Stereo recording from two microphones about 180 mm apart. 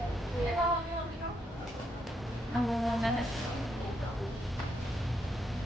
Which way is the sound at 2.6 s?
Centre (ahead or behind).